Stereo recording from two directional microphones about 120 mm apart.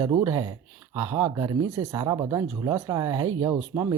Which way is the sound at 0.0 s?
25° right (ahead or behind).